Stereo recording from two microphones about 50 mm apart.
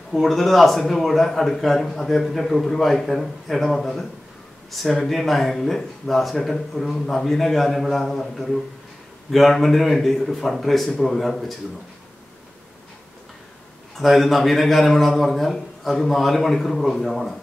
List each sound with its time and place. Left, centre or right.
0.1 s speech: centre
13.9 s speech: centre